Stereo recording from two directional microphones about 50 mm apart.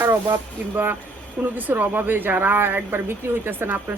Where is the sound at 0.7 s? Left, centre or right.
Right.